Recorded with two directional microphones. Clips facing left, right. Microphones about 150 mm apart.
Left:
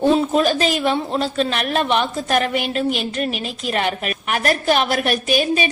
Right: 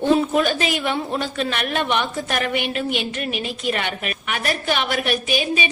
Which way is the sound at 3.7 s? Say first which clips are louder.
Left 4 dB; 40° left (ahead or behind).